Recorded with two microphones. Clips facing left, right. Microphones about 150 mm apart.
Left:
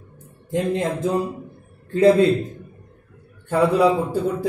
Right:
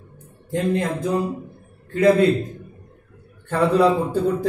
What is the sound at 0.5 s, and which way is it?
A man's voice, 20° left (ahead or behind).